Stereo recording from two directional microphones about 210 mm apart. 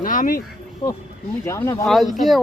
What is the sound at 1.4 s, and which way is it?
Speech, 15° left (ahead or behind).